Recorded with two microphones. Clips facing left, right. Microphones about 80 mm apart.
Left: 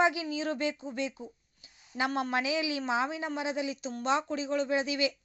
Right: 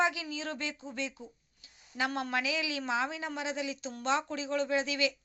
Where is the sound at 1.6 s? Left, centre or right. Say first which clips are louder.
Left 2 dB; centre.